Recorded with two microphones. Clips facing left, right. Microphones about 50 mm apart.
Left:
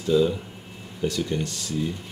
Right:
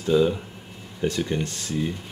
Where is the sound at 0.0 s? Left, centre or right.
Right.